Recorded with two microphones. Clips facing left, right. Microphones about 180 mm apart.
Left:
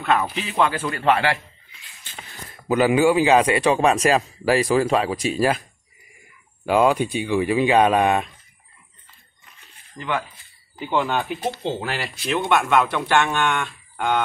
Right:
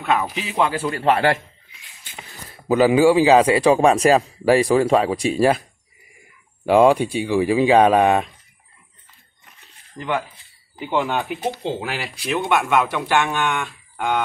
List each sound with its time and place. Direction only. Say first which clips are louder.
0.0 s speech: even; 10° right (ahead or behind)
0.8 s speech: right 2 dB; 30° right (ahead or behind)
2.5 s speech: right 3 dB; 30° right (ahead or behind)
6.6 s speech: right 4 dB; 30° right (ahead or behind)
10.0 s speech: right 2 dB; 25° right (ahead or behind)
10.8 s speech: right 1 dB; 15° right (ahead or behind)